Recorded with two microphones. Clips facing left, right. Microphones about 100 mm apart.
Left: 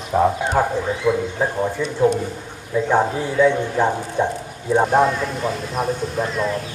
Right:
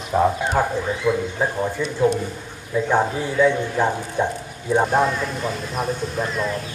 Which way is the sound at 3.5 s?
25° left (ahead or behind).